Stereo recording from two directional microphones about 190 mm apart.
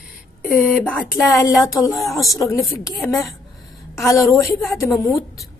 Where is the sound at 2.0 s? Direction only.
Centre (ahead or behind).